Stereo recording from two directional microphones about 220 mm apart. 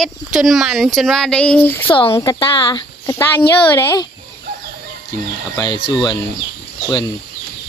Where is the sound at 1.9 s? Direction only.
25° left (ahead or behind).